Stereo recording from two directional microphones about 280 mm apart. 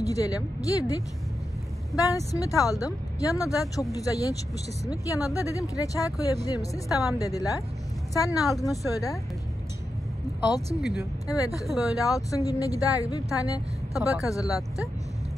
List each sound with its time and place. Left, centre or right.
0.0 s speech: centre
10.8 s speech: centre
11.2 s speech: centre
11.6 s speech: centre
12.0 s speech: centre